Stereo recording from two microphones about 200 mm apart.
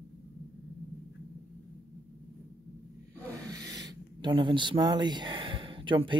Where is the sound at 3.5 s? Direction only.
20° right (ahead or behind).